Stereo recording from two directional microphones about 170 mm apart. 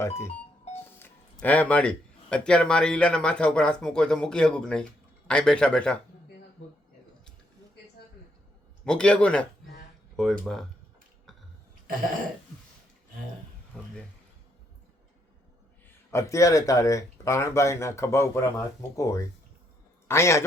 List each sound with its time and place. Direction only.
0.7 s a man's voice: 10° left (ahead or behind)
8.8 s a man's voice: 5° left (ahead or behind)
13.7 s a man's voice: 5° left (ahead or behind)
15.9 s speech: 15° left (ahead or behind)